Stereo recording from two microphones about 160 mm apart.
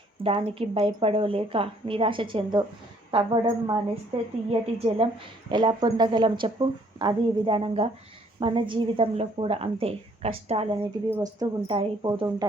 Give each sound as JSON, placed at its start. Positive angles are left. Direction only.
{"t": 0.2, "sound": "speech", "side_deg": -35}
{"t": 4.4, "sound": "speech", "side_deg": -40}
{"t": 11.1, "sound": "speech", "side_deg": -25}